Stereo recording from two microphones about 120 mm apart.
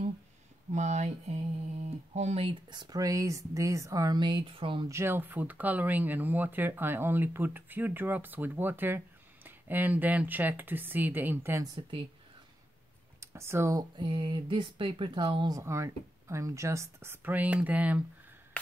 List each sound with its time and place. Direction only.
0.7 s speech: 75° right (ahead or behind)
2.7 s speech: 35° right (ahead or behind)
4.2 s speech: 40° right (ahead or behind)
4.8 s speech: 20° right (ahead or behind)
11.6 s speech: 40° right (ahead or behind)
13.2 s speech: 20° right (ahead or behind)
13.9 s speech: 45° right (ahead or behind); by 18.0 s 10° right (ahead or behind)